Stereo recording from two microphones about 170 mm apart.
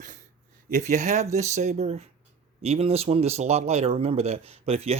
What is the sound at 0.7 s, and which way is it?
Speech, 45° right (ahead or behind).